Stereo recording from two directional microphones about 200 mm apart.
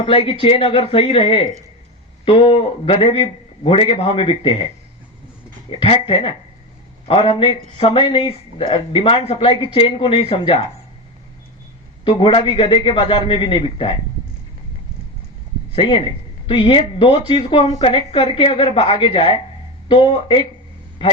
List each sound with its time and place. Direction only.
0.0 s a woman's voice: 25° left (ahead or behind)
5.7 s a woman's voice: 25° left (ahead or behind)
12.0 s a woman's voice: 25° left (ahead or behind)
15.7 s a man's voice: 25° left (ahead or behind)